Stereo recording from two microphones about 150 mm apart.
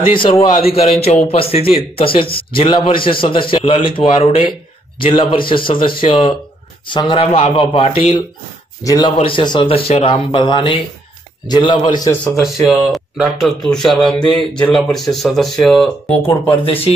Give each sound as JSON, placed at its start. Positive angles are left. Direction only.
{"t": 0.1, "sound": "a man's voice", "side_deg": 35}
{"t": 8.8, "sound": "a man's voice", "side_deg": 25}
{"t": 9.1, "sound": "a man's voice", "side_deg": 35}
{"t": 12.4, "sound": "speech", "side_deg": 0}